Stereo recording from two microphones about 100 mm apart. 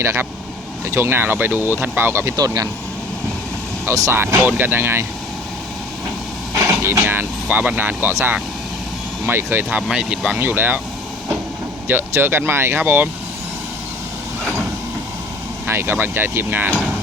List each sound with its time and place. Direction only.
0.0 s speech: 25° right (ahead or behind)
3.8 s speech: 30° right (ahead or behind)
6.5 s vehicle: 35° right (ahead or behind)
7.0 s speech: 20° right (ahead or behind)
9.6 s speech: 10° right (ahead or behind)
11.9 s speech: 20° right (ahead or behind)
15.6 s speech: 25° right (ahead or behind)